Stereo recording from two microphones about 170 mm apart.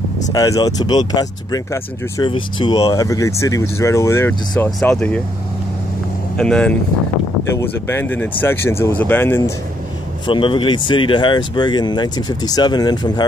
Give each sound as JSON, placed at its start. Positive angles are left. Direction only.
{"t": 0.3, "sound": "speech", "side_deg": 20}
{"t": 6.3, "sound": "speech", "side_deg": 5}
{"t": 10.2, "sound": "speech", "side_deg": 30}